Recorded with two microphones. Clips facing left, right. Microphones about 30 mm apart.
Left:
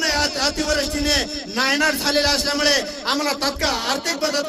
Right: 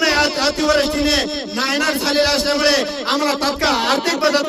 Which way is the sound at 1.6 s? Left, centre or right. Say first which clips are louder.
Even; centre.